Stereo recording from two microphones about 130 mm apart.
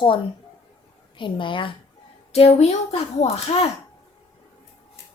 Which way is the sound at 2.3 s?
55° left (ahead or behind).